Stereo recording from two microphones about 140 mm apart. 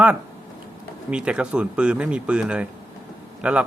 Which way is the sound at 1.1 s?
5° right (ahead or behind).